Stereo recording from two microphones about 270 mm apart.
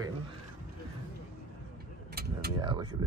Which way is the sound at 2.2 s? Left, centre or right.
Right.